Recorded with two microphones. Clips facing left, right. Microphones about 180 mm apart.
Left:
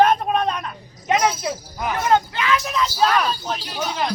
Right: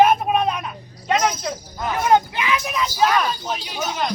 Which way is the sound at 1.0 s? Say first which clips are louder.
Left 1 dB; 10° left (ahead or behind).